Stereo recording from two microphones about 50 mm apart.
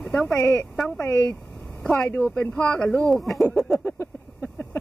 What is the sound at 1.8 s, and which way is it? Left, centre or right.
Speech, centre.